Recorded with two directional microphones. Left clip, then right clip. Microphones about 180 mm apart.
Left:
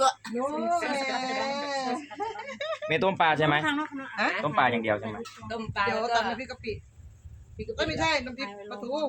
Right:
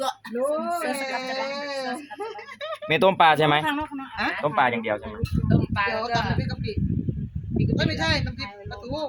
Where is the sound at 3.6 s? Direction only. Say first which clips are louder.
Right 2 dB; 40° right (ahead or behind).